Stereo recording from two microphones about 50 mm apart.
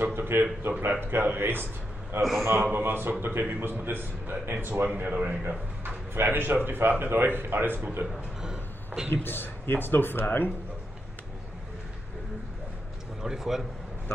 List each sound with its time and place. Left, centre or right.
0.0 s a man's voice: right
4.9 s a man's voice: right
6.1 s a man's voice: right
8.4 s a sound: centre
9.1 s speech: left
13.2 s a man's voice: centre